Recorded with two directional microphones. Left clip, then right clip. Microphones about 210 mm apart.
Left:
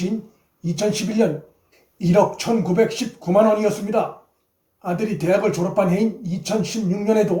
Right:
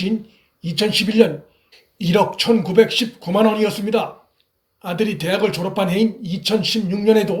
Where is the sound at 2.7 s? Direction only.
55° right (ahead or behind).